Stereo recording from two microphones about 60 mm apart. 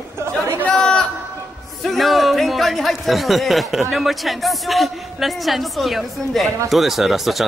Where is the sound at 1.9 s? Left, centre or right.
Centre.